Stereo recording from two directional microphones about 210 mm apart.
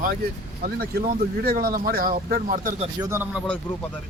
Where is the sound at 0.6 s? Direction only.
45° right (ahead or behind).